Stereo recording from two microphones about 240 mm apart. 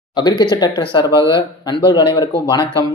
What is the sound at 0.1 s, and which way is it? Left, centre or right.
Speech, centre.